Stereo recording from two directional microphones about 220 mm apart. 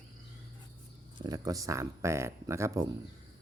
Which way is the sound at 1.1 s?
15° right (ahead or behind).